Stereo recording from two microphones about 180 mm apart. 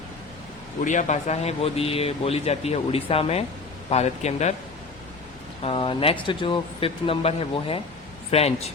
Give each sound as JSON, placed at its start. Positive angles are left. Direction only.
{"t": 0.9, "sound": "speech", "side_deg": 40}
{"t": 5.6, "sound": "speech", "side_deg": 30}